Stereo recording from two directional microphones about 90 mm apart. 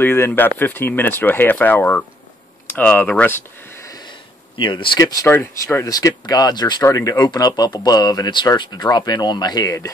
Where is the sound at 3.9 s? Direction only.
55° left (ahead or behind).